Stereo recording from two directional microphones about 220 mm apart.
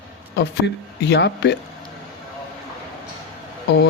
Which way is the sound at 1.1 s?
50° left (ahead or behind).